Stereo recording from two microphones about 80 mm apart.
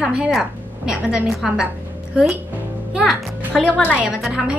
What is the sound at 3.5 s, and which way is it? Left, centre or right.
Speech, centre.